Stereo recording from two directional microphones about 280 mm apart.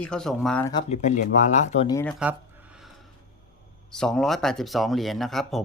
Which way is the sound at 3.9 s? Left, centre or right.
Centre.